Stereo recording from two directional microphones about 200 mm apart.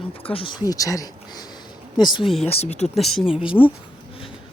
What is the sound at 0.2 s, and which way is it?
Speech, 25° left (ahead or behind).